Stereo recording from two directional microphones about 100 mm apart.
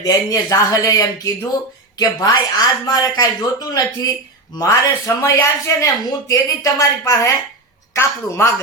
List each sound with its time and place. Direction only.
0.0 s speech: 40° left (ahead or behind)
7.9 s a woman's voice: 25° left (ahead or behind)